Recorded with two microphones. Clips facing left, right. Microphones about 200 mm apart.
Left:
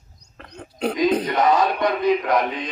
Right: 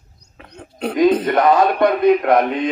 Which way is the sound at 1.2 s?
60° right (ahead or behind).